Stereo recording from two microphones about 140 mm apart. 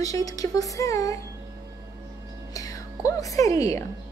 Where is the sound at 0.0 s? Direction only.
25° left (ahead or behind).